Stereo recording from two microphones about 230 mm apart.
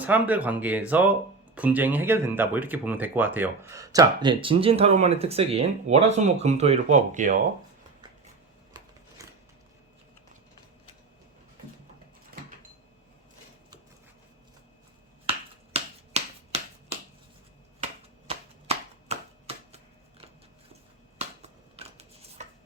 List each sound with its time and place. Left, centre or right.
0.0 s speech: centre; by 7.3 s right
8.7 s shuffling cards: centre
15.3 s finger snapping: right
18.3 s a sound: right
21.8 s shuffling cards: right